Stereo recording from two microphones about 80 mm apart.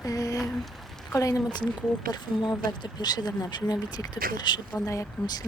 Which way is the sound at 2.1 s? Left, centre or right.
Left.